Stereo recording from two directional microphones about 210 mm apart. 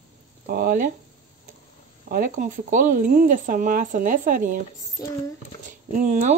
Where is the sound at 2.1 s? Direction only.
40° right (ahead or behind).